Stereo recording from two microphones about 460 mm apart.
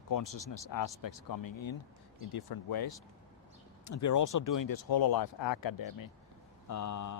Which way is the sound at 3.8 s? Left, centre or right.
Left.